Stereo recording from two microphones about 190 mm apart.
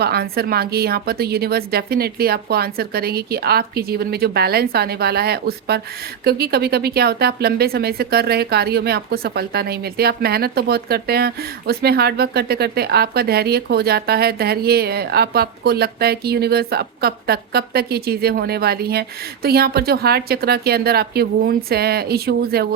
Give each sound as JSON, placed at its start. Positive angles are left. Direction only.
{"t": 0.0, "sound": "speech", "side_deg": -55}